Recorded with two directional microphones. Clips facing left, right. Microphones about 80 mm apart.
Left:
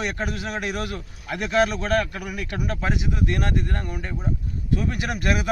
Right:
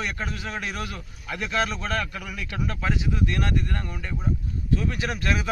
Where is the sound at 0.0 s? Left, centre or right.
Left.